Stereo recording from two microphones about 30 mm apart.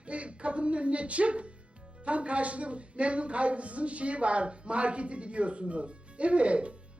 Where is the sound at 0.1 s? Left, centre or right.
Right.